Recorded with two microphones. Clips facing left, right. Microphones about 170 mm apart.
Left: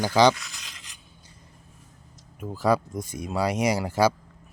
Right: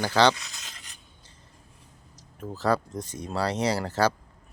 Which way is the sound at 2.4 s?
10° left (ahead or behind).